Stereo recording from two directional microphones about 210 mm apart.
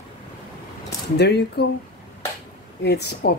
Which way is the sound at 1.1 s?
50° left (ahead or behind).